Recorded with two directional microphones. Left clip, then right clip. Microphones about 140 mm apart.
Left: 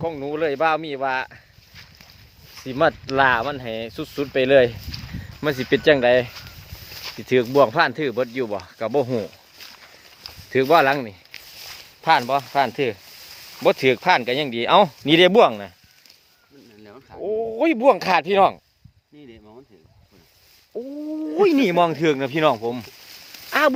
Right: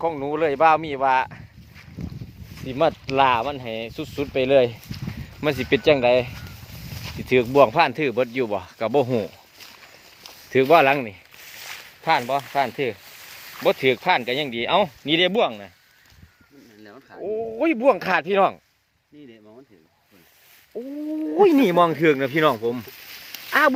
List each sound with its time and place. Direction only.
0.0 s speech: 10° right (ahead or behind)
2.6 s speech: 15° left (ahead or behind)
5.2 s speech: centre (ahead or behind)
10.5 s speech: centre (ahead or behind)
12.0 s speech: 25° left (ahead or behind); by 15.7 s 60° left (ahead or behind)
16.8 s a sound: 70° left (ahead or behind)
17.2 s speech: 25° left (ahead or behind)
20.7 s speech: 10° left (ahead or behind)